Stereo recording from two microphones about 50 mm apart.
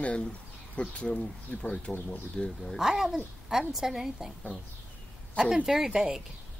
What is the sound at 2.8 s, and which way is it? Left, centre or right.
Speech, centre.